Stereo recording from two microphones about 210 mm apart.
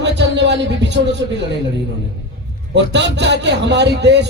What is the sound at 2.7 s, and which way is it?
Speech, 55° right (ahead or behind).